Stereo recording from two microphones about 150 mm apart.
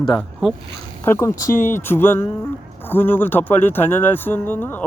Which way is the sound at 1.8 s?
15° left (ahead or behind).